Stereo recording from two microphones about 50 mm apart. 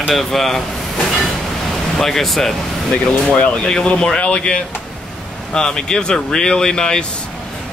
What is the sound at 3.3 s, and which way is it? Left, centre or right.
Speech, centre.